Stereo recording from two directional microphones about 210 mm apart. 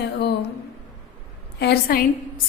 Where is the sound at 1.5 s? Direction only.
50° left (ahead or behind).